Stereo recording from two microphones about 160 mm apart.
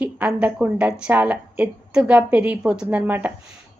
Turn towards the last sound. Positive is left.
turn(degrees=-10)  # may be behind; listen again after turning